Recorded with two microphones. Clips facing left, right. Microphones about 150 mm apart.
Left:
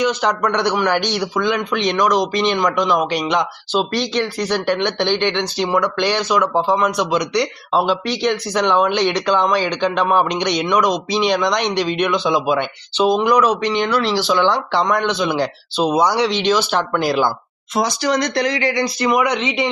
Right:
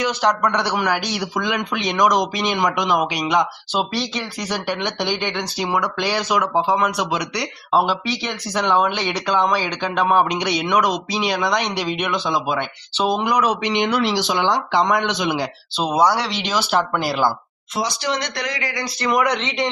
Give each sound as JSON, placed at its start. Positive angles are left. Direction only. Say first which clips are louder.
{"t": 0.0, "sound": "speech", "louder": "left 1 dB", "side_deg": 0}
{"t": 15.8, "sound": "speech", "louder": "left 2 dB", "side_deg": 0}
{"t": 17.7, "sound": "speech", "louder": "left 5 dB", "side_deg": 45}
{"t": 18.9, "sound": "speech", "louder": "right 2 dB", "side_deg": 5}